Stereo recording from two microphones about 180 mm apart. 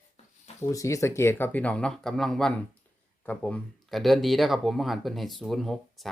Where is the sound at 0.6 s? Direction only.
20° left (ahead or behind).